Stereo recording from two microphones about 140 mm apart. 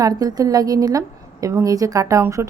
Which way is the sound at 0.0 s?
25° right (ahead or behind).